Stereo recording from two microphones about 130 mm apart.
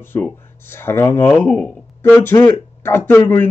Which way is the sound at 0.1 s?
25° left (ahead or behind).